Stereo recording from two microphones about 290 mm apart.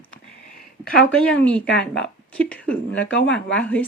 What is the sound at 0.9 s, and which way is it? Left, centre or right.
A woman's voice, centre.